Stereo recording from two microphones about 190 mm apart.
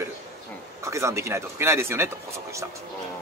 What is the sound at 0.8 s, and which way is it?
Speech, 15° right (ahead or behind).